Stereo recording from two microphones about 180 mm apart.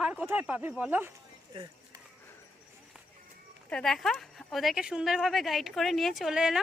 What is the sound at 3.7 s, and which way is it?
Speech, 5° left (ahead or behind).